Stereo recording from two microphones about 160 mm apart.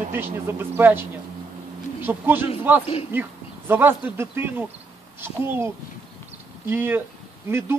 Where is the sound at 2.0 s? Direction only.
10° right (ahead or behind).